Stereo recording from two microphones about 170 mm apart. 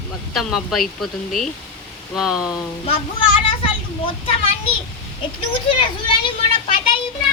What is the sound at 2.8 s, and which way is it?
A child's voice, 30° left (ahead or behind).